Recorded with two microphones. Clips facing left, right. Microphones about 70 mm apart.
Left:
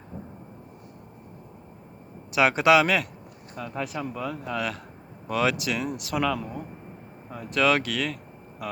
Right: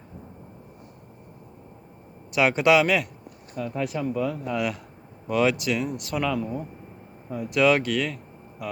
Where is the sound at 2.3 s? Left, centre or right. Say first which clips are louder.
Even; centre.